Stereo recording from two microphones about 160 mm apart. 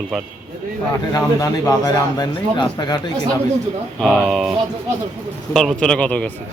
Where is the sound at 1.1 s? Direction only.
20° left (ahead or behind).